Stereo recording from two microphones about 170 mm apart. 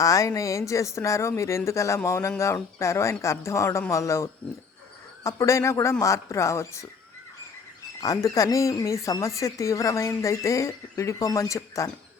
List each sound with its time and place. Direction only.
0.0 s speech: 20° left (ahead or behind)
8.0 s speech: 20° left (ahead or behind)